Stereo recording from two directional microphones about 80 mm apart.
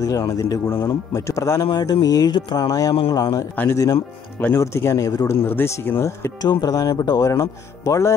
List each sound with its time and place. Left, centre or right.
0.0 s speech: left
1.9 s speech: left
6.4 s speech: left
7.2 s speech: left